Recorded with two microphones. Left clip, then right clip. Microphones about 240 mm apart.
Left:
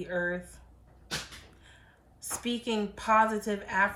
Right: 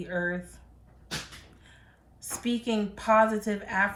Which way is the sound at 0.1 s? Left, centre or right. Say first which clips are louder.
Right 1 dB; centre.